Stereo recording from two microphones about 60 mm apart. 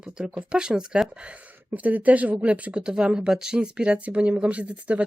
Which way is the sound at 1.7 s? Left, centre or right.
Right.